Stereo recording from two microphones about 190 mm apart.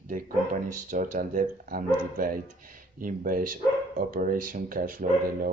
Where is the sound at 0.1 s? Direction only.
45° right (ahead or behind).